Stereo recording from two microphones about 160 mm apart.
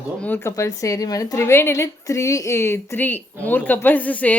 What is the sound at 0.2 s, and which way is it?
A woman's voice, 15° left (ahead or behind).